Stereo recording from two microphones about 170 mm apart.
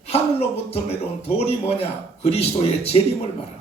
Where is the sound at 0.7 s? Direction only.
35° left (ahead or behind).